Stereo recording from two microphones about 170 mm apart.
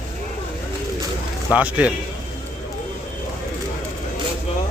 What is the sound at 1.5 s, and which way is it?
Speech, 10° right (ahead or behind).